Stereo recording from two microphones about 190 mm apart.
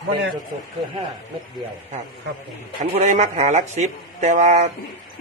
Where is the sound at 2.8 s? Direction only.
40° right (ahead or behind).